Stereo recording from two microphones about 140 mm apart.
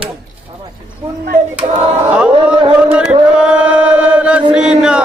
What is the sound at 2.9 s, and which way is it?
Chant, 5° right (ahead or behind).